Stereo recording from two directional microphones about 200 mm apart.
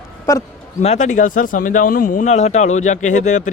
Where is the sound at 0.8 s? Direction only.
35° left (ahead or behind).